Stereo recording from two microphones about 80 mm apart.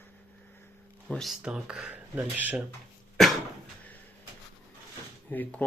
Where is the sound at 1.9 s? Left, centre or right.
Right.